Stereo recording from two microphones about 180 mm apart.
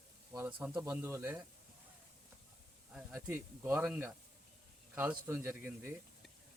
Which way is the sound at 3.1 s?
10° right (ahead or behind).